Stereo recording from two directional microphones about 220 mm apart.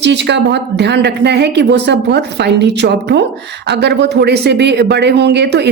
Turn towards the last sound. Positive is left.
turn(degrees=-50)  # may be behind; listen again after turning